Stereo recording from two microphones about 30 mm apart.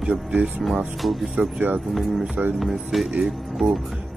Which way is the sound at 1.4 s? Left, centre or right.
Right.